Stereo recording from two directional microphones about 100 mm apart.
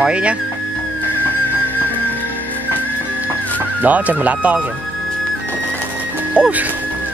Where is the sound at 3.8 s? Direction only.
15° right (ahead or behind).